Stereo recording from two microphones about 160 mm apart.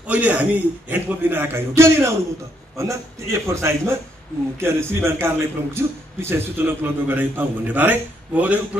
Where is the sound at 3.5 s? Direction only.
15° right (ahead or behind).